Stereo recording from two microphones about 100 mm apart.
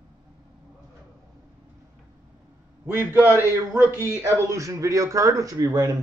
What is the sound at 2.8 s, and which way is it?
A man's voice, 25° right (ahead or behind).